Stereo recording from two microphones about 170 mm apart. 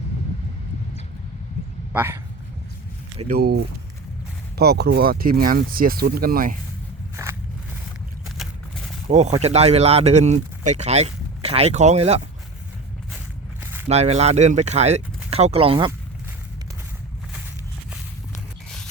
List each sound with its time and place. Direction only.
1.9 s speech: 15° right (ahead or behind)
3.2 s speech: 65° right (ahead or behind)
9.0 s speech: 40° right (ahead or behind)
13.6 s biting: 15° right (ahead or behind)
13.8 s speech: 40° right (ahead or behind)